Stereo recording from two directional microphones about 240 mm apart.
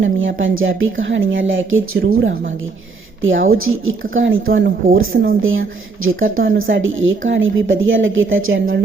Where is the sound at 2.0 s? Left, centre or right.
Right.